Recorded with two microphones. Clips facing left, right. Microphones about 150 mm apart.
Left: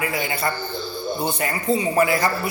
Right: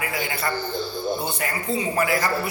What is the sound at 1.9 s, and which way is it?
Speech, 25° left (ahead or behind).